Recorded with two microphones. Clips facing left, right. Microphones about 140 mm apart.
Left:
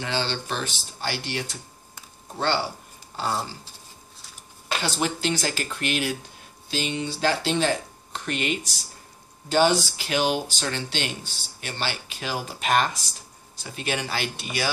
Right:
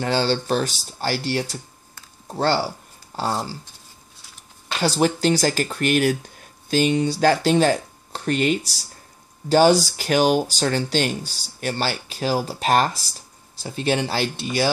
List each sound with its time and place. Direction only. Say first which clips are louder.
0.0 s speech: right 7 dB; 40° right (ahead or behind)
4.8 s speech: right 8 dB; 40° right (ahead or behind)